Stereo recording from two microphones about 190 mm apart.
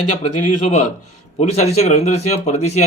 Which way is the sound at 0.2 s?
40° left (ahead or behind).